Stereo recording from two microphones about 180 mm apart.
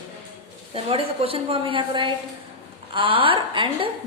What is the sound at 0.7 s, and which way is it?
A woman's voice, 30° right (ahead or behind).